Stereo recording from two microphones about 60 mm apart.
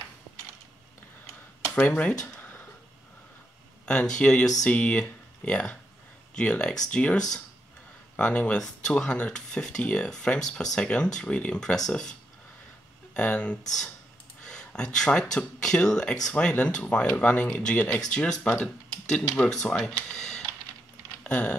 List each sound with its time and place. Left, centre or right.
2.0 s speech: left
4.1 s speech: centre
21.2 s a sound: centre